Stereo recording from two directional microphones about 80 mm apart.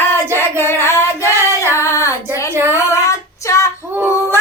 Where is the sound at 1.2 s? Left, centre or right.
Left.